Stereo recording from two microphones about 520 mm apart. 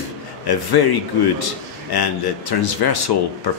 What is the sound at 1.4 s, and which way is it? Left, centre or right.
A man's voice, left.